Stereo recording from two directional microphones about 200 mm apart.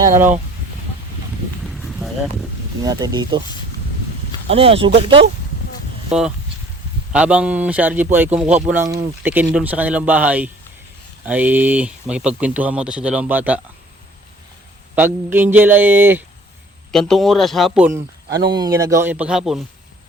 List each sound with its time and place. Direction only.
0.0 s speech: 10° right (ahead or behind)
1.6 s a sound: centre (ahead or behind)
2.8 s speech: 20° right (ahead or behind)
4.4 s speech: 30° right (ahead or behind)
6.1 s speech: 5° right (ahead or behind)
14.9 s speech: 10° right (ahead or behind)
16.9 s speech: centre (ahead or behind)
18.3 s speech: 55° right (ahead or behind)
18.5 s speech: 20° right (ahead or behind); by 19.6 s centre (ahead or behind)